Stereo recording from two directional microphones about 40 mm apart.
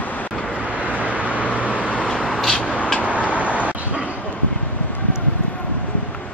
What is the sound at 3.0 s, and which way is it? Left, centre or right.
Vehicle, right.